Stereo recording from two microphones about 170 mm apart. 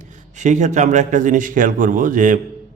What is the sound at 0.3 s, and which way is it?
Speech, 45° right (ahead or behind).